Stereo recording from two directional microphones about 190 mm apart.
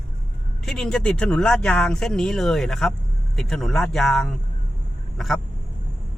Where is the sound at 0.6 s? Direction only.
5° left (ahead or behind).